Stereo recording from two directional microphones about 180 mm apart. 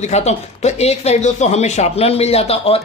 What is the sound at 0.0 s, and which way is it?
Speech, 40° left (ahead or behind).